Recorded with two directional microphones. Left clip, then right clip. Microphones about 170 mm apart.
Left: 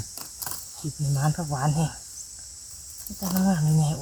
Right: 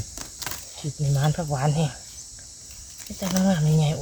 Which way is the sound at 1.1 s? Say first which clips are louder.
Right 2 dB; 30° right (ahead or behind).